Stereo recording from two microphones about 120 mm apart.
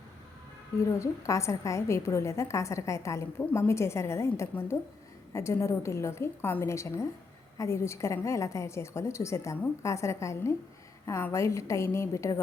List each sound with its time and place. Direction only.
0.9 s a woman's voice: 25° left (ahead or behind)